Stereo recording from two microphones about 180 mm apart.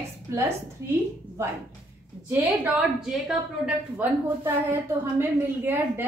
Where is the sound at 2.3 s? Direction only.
10° right (ahead or behind).